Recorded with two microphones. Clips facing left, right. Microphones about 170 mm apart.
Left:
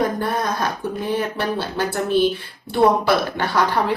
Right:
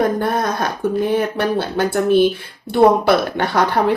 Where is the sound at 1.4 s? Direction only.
55° right (ahead or behind).